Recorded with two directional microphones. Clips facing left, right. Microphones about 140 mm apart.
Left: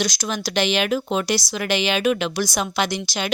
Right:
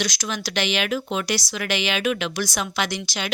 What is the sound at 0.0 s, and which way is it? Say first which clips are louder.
Speech: left 3 dB; 35° left (ahead or behind).